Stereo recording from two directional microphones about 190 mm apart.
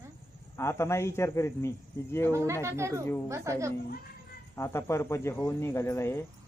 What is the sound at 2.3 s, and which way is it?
Speech, 15° right (ahead or behind).